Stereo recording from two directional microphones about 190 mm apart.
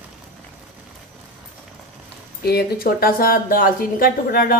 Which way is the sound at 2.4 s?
55° left (ahead or behind).